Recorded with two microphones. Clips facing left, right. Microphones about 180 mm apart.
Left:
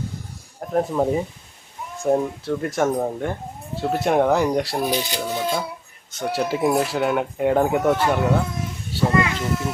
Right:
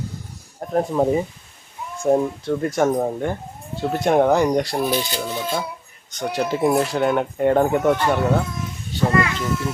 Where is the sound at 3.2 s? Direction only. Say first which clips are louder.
Right 2 dB; centre (ahead or behind).